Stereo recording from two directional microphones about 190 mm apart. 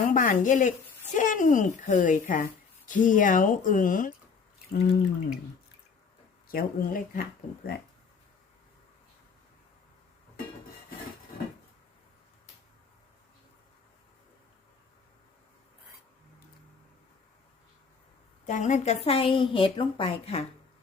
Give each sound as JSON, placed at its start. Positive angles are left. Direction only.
{"t": 0.1, "sound": "speech", "side_deg": 45}
{"t": 4.7, "sound": "drip", "side_deg": 60}
{"t": 6.5, "sound": "speech", "side_deg": 50}
{"t": 18.4, "sound": "a woman's voice", "side_deg": 40}